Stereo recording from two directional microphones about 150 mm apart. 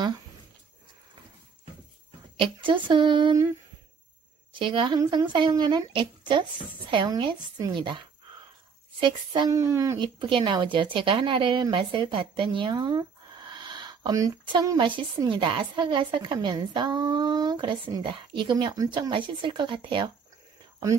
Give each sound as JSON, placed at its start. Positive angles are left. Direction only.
{"t": 2.3, "sound": "speech", "side_deg": -35}
{"t": 4.5, "sound": "speech", "side_deg": -35}
{"t": 9.0, "sound": "speech", "side_deg": -30}